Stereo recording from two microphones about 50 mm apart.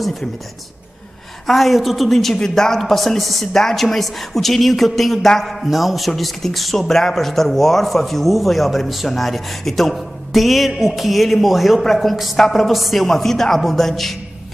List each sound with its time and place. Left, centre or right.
1.5 s speech: centre